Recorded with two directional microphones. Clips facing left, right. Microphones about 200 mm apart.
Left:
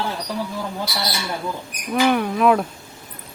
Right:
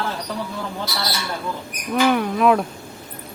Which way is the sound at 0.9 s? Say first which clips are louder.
Even; 15° left (ahead or behind).